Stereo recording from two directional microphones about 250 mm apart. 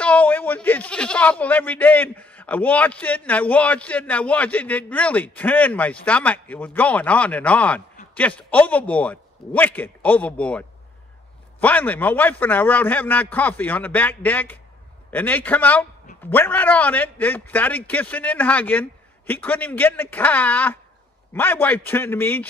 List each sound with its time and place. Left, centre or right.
0.0 s a man's voice: centre
11.6 s a man's voice: centre